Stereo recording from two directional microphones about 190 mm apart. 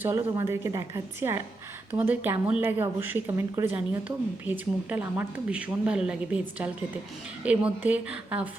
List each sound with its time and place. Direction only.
0.0 s speech: 15° right (ahead or behind)